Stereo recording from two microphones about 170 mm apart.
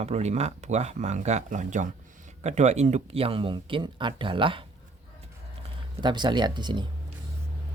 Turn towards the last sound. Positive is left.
turn(degrees=-25)  # may be behind; listen again after turning